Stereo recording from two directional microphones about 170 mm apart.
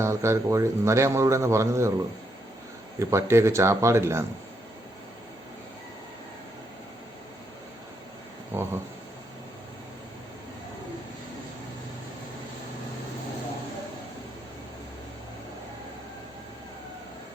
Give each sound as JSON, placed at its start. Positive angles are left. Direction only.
{"t": 0.0, "sound": "a man's voice", "side_deg": -15}
{"t": 3.0, "sound": "a man's voice", "side_deg": -15}
{"t": 8.5, "sound": "a man's voice", "side_deg": -15}